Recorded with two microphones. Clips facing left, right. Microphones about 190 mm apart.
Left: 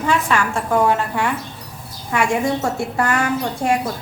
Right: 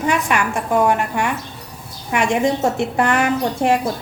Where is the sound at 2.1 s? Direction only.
20° right (ahead or behind).